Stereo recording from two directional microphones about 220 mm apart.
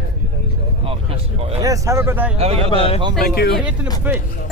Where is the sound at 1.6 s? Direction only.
15° right (ahead or behind).